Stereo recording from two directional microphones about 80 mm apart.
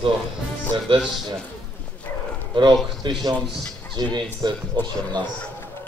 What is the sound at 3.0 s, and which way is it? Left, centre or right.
Speech, right.